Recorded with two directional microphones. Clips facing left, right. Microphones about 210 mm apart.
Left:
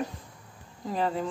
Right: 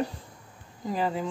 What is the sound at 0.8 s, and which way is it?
Speech, 5° right (ahead or behind).